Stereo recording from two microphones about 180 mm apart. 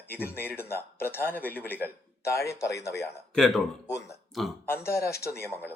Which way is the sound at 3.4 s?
Centre (ahead or behind).